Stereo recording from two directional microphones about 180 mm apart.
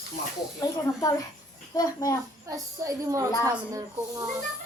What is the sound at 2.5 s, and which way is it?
A woman's voice, 20° right (ahead or behind).